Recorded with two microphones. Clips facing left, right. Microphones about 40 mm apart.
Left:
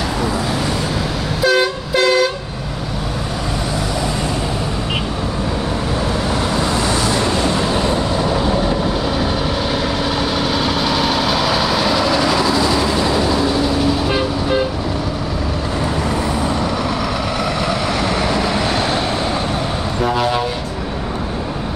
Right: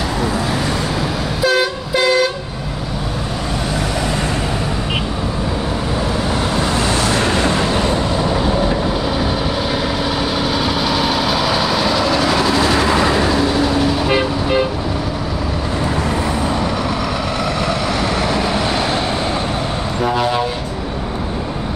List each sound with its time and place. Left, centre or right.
1.4 s vehicle: centre
6.3 s vehicle: centre
7.0 s vehicle: right
7.8 s vehicle: centre
10.3 s vehicle: centre
12.5 s train: right
13.1 s vehicle: right
17.6 s vehicle: centre
20.0 s vehicle: centre